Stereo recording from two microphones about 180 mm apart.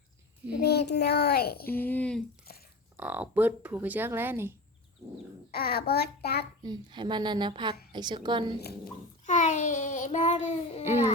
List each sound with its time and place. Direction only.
0.6 s a child's voice: 65° left (ahead or behind)
1.6 s a woman's voice: 10° left (ahead or behind)
2.5 s a sound: 55° left (ahead or behind)
3.0 s speech: 10° right (ahead or behind)
5.5 s a child's voice: 60° left (ahead or behind)
6.6 s a child's voice: 25° right (ahead or behind)
9.2 s a sound: 40° left (ahead or behind)